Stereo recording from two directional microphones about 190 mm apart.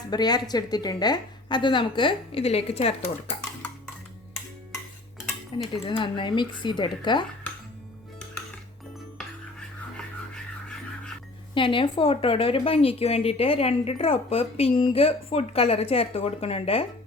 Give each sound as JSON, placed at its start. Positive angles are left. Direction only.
{"t": 0.1, "sound": "a woman's voice", "side_deg": 20}
{"t": 5.7, "sound": "a woman's voice", "side_deg": 30}
{"t": 10.3, "sound": "a sound", "side_deg": 5}
{"t": 11.5, "sound": "a woman's voice", "side_deg": 25}